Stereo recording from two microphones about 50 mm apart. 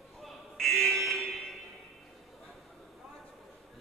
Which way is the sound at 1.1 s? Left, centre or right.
Centre.